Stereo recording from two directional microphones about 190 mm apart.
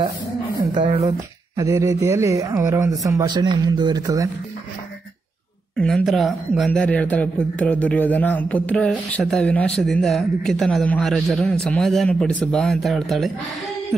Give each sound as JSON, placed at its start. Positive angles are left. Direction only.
{"t": 1.6, "sound": "speech", "side_deg": -15}
{"t": 5.8, "sound": "a man's voice", "side_deg": 5}